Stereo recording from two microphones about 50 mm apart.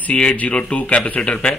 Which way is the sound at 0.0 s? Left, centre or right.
Left.